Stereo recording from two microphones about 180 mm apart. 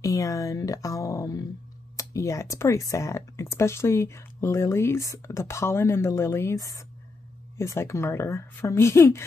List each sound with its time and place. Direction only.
0.0 s speech: 20° left (ahead or behind)